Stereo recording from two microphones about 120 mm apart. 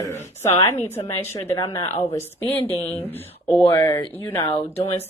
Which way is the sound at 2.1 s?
15° left (ahead or behind).